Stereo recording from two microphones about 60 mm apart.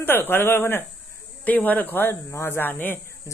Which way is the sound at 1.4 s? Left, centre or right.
Left.